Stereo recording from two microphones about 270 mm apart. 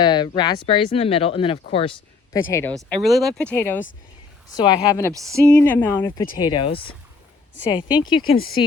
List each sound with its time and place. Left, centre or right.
0.0 s speech: centre